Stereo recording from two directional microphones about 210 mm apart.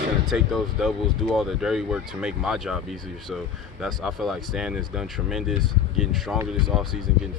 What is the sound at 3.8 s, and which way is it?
Speech, centre (ahead or behind).